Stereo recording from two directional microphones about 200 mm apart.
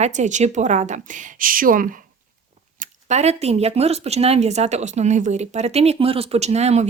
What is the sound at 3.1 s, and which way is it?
A woman's voice, 35° right (ahead or behind).